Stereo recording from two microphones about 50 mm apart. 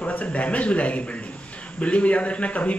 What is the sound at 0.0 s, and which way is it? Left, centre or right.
Speech, left.